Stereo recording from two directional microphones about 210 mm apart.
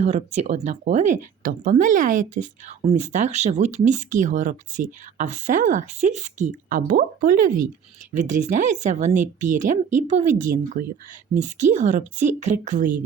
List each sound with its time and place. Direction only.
0.0 s speech: 30° right (ahead or behind)